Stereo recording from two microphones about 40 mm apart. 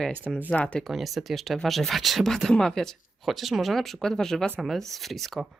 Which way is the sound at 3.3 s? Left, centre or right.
Centre.